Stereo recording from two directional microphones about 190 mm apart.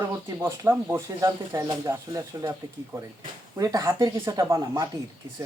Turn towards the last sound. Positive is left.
turn(degrees=-20)  # may be behind; listen again after turning